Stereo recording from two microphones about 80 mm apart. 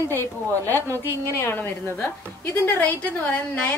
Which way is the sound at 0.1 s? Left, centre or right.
Left.